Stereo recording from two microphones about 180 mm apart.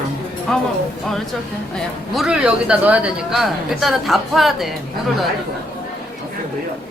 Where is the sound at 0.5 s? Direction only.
5° left (ahead or behind).